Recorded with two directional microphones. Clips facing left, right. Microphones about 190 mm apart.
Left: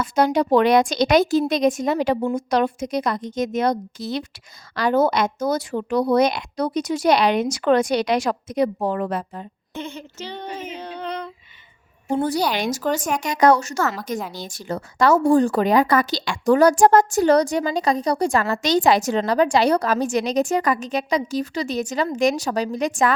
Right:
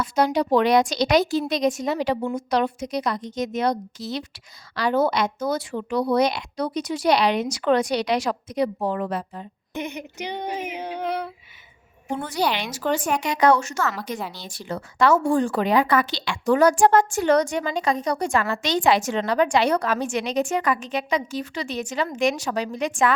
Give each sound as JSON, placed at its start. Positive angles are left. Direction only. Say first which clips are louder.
{"t": 0.0, "sound": "speech", "louder": "left 2 dB", "side_deg": 50}
{"t": 9.7, "sound": "female singing", "louder": "right 2 dB", "side_deg": -15}
{"t": 12.0, "sound": "speech", "louder": "left 4 dB", "side_deg": 35}